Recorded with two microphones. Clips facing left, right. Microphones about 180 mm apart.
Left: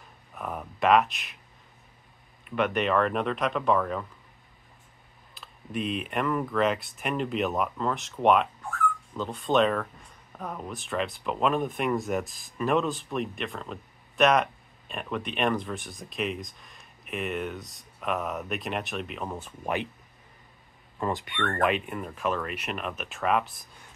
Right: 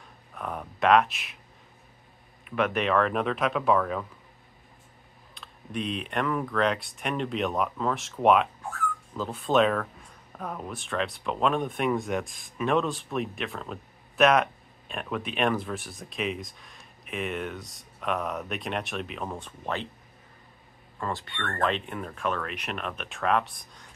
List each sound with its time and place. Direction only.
0.3 s a sound: 5° left (ahead or behind)
2.4 s speech: centre (ahead or behind)
5.3 s speech: 5° left (ahead or behind)
21.0 s speech: 20° left (ahead or behind)